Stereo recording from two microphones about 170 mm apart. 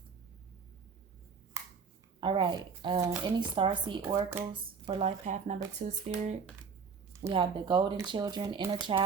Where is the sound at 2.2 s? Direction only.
30° right (ahead or behind).